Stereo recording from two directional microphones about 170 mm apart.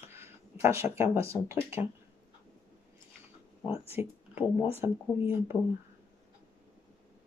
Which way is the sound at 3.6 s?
35° left (ahead or behind).